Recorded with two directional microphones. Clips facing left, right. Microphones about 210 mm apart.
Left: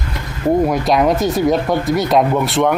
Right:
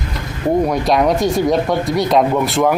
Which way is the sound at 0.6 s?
Centre (ahead or behind).